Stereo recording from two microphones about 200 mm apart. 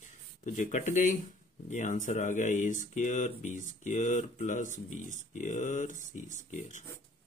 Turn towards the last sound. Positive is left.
turn(degrees=40)  # may be behind; listen again after turning